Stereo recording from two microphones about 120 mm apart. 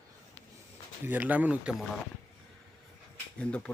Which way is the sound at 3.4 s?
10° left (ahead or behind).